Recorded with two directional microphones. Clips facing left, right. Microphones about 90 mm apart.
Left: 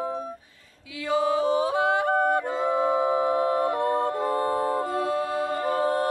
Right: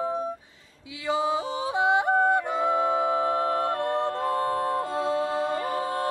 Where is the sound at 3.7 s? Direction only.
15° left (ahead or behind).